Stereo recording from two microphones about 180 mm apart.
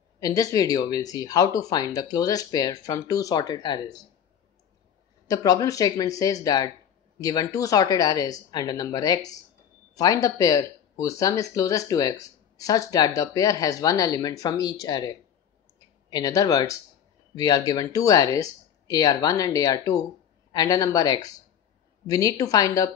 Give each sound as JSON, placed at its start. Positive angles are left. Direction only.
{"t": 0.2, "sound": "speech", "side_deg": 20}
{"t": 5.3, "sound": "speech", "side_deg": 20}